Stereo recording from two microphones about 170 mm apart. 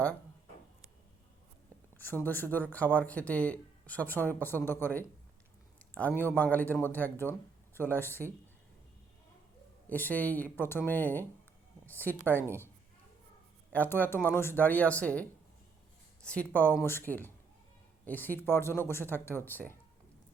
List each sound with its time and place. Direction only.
2.0 s speech: 10° left (ahead or behind)
9.9 s speech: 10° left (ahead or behind)
13.7 s speech: 10° left (ahead or behind)